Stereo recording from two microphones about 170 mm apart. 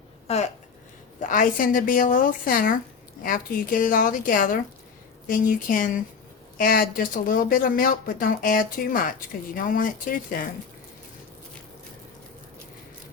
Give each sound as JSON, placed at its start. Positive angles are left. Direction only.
{"t": 0.3, "sound": "speech", "side_deg": 40}
{"t": 1.2, "sound": "a woman's voice", "side_deg": 50}